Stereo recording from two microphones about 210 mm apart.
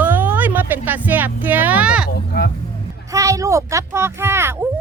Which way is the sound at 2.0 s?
50° left (ahead or behind).